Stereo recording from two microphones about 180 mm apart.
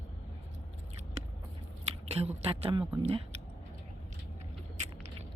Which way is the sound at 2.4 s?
35° right (ahead or behind).